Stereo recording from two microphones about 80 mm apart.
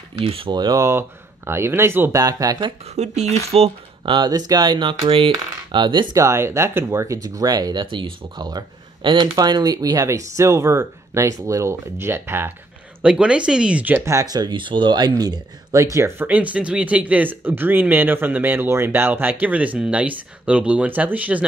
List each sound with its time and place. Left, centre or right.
0.2 s speech: right
0.7 s speech: right
2.1 s speech: right
4.0 s speech: right
4.3 s speech: right
6.1 s speech: right
7.8 s speech: right
8.5 s speech: right
13.0 s speech: centre
13.9 s speech: right
14.2 s speech: right
14.5 s speech: right
16.2 s speech: right